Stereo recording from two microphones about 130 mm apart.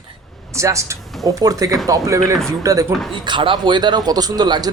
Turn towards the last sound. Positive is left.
turn(degrees=-30)  # may be behind; listen again after turning